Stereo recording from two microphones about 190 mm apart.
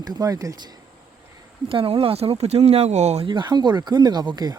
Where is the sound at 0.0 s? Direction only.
20° right (ahead or behind).